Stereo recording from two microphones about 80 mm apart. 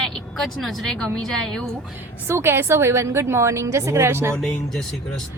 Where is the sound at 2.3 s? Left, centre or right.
Right.